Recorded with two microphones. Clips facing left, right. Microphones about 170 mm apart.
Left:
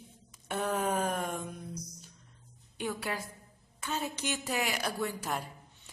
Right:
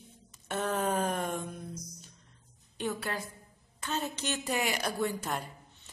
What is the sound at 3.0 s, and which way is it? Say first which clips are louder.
A woman's voice: even; 10° left (ahead or behind).